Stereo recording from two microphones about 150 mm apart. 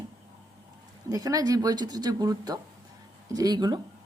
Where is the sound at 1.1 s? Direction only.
25° right (ahead or behind).